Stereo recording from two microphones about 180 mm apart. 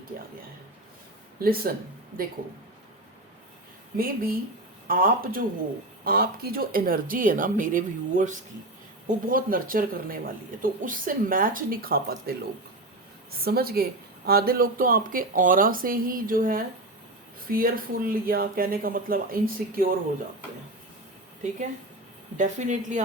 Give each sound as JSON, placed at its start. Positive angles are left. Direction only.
{"t": 1.4, "sound": "a woman's voice", "side_deg": -55}
{"t": 3.9, "sound": "a woman's voice", "side_deg": -55}
{"t": 22.4, "sound": "speech", "side_deg": -45}